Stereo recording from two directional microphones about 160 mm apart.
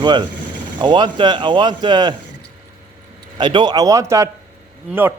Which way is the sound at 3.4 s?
30° right (ahead or behind).